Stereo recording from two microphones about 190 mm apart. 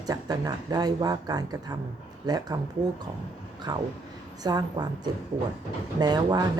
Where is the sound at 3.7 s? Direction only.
15° right (ahead or behind).